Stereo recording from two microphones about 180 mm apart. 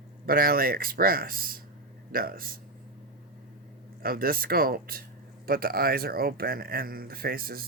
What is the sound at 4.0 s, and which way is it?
Speech, 55° right (ahead or behind).